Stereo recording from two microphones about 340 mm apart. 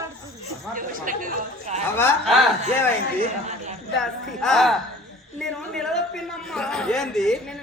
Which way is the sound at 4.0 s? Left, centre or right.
Centre.